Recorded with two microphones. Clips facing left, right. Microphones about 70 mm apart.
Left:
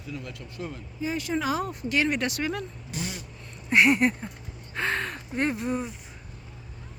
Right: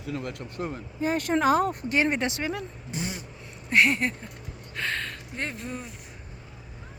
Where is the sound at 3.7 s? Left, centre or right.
Centre.